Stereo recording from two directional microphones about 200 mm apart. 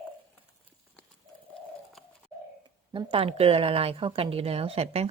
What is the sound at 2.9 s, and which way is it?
A woman's voice, 25° right (ahead or behind).